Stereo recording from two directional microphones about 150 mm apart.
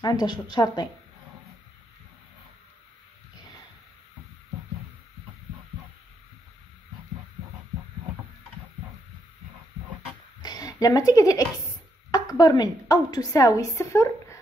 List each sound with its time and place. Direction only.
0.0 s speech: 25° left (ahead or behind)
10.4 s a woman's voice: 25° left (ahead or behind)